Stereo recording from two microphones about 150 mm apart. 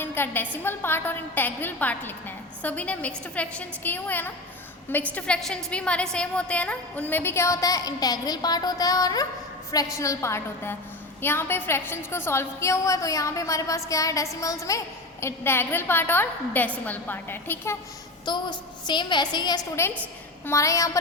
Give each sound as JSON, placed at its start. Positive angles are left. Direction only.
{"t": 0.0, "sound": "a woman's voice", "side_deg": 15}
{"t": 18.3, "sound": "a woman's voice", "side_deg": 30}